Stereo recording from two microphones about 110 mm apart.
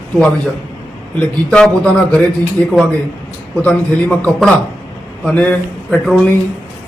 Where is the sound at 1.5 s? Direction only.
10° left (ahead or behind).